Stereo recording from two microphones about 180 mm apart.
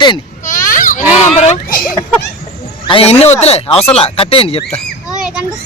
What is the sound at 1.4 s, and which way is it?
Speech, 35° left (ahead or behind).